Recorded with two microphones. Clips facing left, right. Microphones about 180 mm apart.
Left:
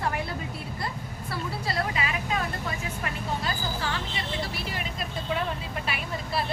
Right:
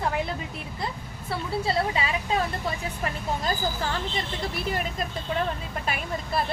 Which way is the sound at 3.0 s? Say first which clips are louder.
Right 3 dB; 40° right (ahead or behind).